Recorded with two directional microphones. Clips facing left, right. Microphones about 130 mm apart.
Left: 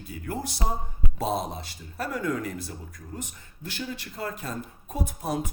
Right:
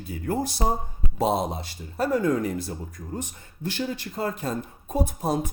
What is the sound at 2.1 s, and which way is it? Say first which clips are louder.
Speech: right 6 dB; 35° right (ahead or behind).